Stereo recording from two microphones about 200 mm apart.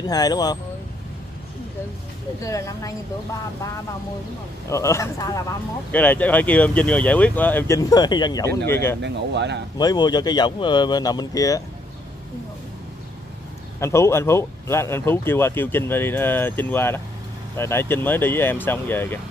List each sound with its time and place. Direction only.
0.0 s speech: 20° left (ahead or behind)
2.4 s speech: 15° left (ahead or behind)
4.6 s speech: 15° left (ahead or behind)
9.0 s speech: 60° right (ahead or behind)
9.8 s speech: 20° left (ahead or behind)
13.7 s speech: 15° left (ahead or behind)